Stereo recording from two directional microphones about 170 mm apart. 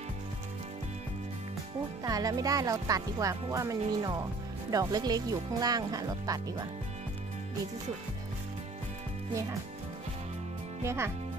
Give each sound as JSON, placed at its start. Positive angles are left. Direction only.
{"t": 2.0, "sound": "speech", "side_deg": -20}
{"t": 10.8, "sound": "speech", "side_deg": -15}